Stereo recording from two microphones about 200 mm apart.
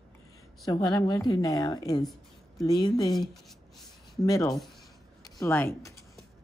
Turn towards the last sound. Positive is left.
turn(degrees=10)  # may be behind; listen again after turning